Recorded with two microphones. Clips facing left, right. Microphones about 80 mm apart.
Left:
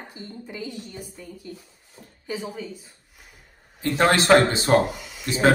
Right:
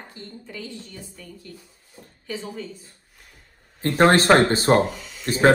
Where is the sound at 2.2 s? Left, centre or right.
Centre.